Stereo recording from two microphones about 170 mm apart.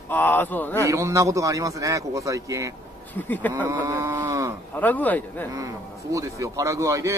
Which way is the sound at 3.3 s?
10° left (ahead or behind).